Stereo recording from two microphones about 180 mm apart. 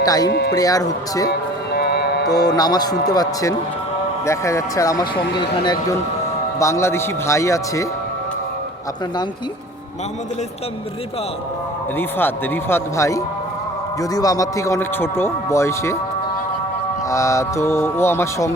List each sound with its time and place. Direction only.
0.0 s speech: 20° left (ahead or behind)
0.3 s speech: 65° left (ahead or behind)
0.5 s speech: 20° left (ahead or behind)
1.3 s music: 65° left (ahead or behind)
2.2 s speech: 20° left (ahead or behind)
11.9 s speech: 10° left (ahead or behind)
17.1 s speech: 15° left (ahead or behind)